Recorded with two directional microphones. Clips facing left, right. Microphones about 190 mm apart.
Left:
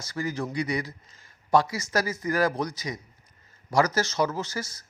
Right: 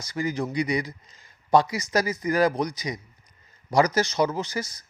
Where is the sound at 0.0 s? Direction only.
15° right (ahead or behind).